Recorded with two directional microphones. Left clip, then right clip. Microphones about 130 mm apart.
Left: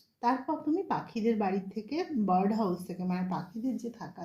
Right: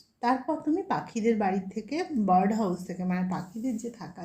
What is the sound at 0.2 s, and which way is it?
A woman's voice, 25° right (ahead or behind).